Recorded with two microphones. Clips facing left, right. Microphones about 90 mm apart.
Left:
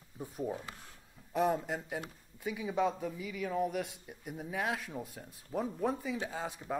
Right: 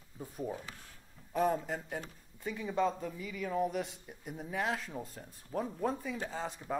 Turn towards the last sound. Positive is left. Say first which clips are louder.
# even
turn(degrees=5)  # may be behind; listen again after turning